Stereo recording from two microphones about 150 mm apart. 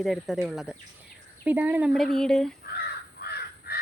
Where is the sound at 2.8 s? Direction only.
90° left.